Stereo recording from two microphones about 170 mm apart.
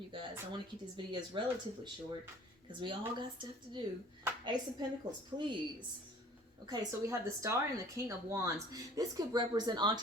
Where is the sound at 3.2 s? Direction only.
30° right (ahead or behind).